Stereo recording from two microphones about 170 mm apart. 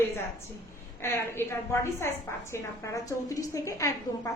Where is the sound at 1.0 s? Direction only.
15° left (ahead or behind).